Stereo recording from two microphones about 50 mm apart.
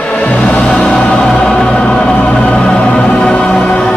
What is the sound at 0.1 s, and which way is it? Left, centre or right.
Music, left.